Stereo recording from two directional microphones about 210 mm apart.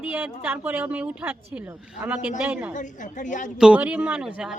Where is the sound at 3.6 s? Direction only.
5° right (ahead or behind).